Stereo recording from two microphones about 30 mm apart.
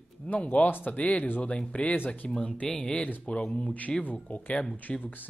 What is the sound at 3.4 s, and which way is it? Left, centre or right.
Speech, left.